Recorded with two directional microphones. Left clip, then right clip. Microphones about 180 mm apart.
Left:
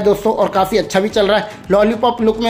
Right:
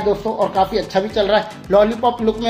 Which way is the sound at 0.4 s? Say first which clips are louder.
Left 3 dB; 40° left (ahead or behind).